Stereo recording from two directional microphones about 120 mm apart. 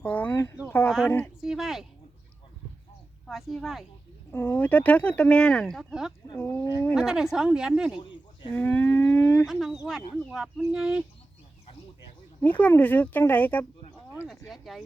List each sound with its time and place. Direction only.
0.0 s a sound: 15° left (ahead or behind)
1.0 s speech: 15° left (ahead or behind)
1.4 s a woman's voice: centre (ahead or behind)
3.2 s a woman's voice: centre (ahead or behind)
4.3 s speech: 15° left (ahead or behind); by 6.1 s 5° right (ahead or behind)
6.4 s speech: 20° left (ahead or behind)
6.9 s a woman's voice: 5° right (ahead or behind)
7.9 s a sound: 40° left (ahead or behind)
8.5 s speech: 15° left (ahead or behind)
9.5 s a woman's voice: centre (ahead or behind)
12.4 s speech: 15° left (ahead or behind)
14.3 s speech: centre (ahead or behind)